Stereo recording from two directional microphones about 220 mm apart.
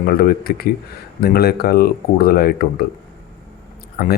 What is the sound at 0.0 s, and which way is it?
Speech, 40° left (ahead or behind).